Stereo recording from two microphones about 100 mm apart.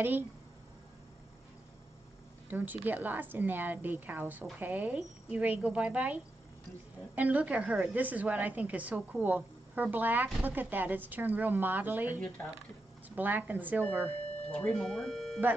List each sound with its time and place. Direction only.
2.5 s a woman's voice: 20° right (ahead or behind)
14.5 s speech: 10° left (ahead or behind)